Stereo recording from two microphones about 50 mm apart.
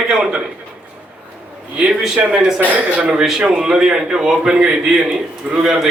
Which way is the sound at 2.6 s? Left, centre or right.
Right.